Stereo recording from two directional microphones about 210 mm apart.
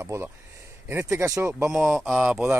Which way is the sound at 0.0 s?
15° right (ahead or behind).